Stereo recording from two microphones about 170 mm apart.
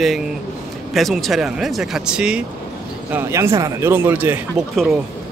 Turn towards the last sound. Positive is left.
turn(degrees=0)  # may be behind; listen again after turning